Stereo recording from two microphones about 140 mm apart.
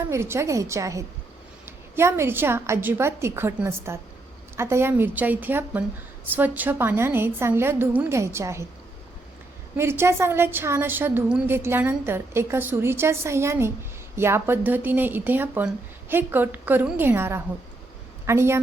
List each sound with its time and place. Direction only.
0.0 s a woman's voice: 20° right (ahead or behind)
9.7 s a woman's voice: 20° right (ahead or behind)